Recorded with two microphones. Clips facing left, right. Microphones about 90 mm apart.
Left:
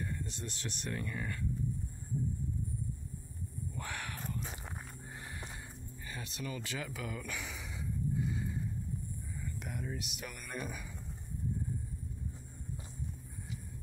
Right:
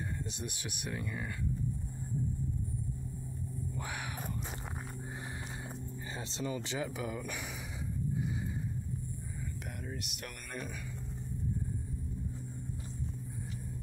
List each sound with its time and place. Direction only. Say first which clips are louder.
0.3 s speech: right 1 dB; 15° right (ahead or behind)
3.8 s a sound: left 1 dB; 15° right (ahead or behind)
6.1 s speech: right 4 dB; 25° right (ahead or behind)
9.9 s speech: even; centre (ahead or behind)